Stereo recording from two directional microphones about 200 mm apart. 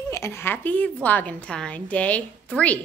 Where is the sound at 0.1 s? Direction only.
10° left (ahead or behind).